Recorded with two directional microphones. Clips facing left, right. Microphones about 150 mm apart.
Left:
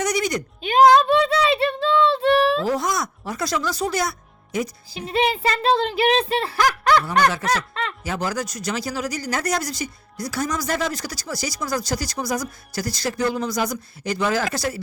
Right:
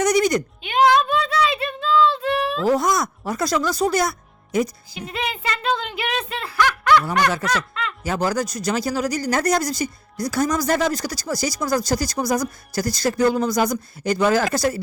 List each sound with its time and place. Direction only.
0.0 s bleat: 45° right (ahead or behind)
0.6 s a sound: 40° left (ahead or behind)
2.6 s speech: 45° right (ahead or behind)
4.9 s speech: 30° left (ahead or behind)
8.0 s speech: 40° right (ahead or behind)